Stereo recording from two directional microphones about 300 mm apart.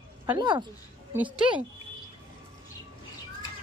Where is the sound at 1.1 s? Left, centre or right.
Centre.